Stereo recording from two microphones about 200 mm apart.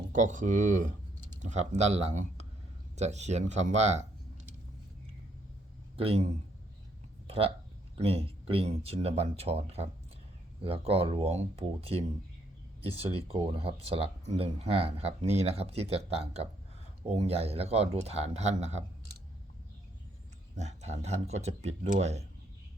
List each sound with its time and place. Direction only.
0.1 s speech: 40° right (ahead or behind)
6.0 s speech: 30° right (ahead or behind)
20.6 s speech: 35° right (ahead or behind)